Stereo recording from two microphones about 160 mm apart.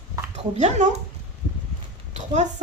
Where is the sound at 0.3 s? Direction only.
45° right (ahead or behind).